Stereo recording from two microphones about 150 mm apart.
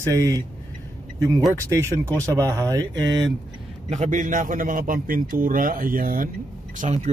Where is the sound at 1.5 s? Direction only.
20° right (ahead or behind).